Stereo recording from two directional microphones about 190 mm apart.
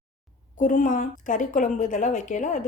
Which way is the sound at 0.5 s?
40° left (ahead or behind).